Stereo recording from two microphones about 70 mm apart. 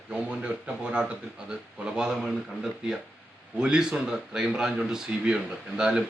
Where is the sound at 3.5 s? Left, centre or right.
Centre.